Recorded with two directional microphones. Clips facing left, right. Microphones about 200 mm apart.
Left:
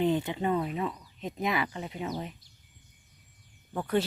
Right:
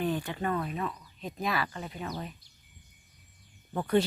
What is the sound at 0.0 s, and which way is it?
Speech, 20° left (ahead or behind).